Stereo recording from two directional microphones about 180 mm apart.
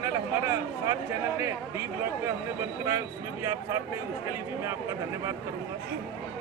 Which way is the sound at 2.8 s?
15° right (ahead or behind).